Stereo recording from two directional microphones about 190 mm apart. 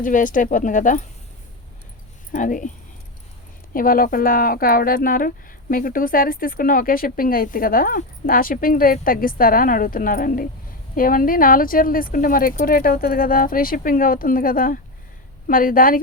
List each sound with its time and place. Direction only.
0.0 s speech: 45° left (ahead or behind)
2.3 s speech: 45° left (ahead or behind)
3.8 s speech: 50° left (ahead or behind)